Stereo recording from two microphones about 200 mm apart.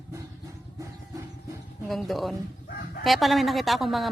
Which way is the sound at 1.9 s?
Centre (ahead or behind).